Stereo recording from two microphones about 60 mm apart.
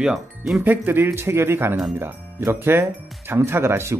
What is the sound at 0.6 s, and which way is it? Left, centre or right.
Speech, right.